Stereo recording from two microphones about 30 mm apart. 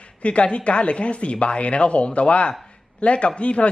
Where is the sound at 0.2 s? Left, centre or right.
Left.